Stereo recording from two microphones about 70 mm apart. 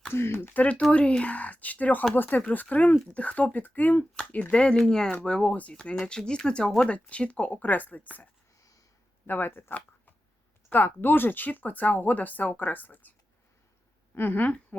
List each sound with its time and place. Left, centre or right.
0.1 s speech: left
4.5 s speech: centre
9.2 s speech: left
14.2 s speech: left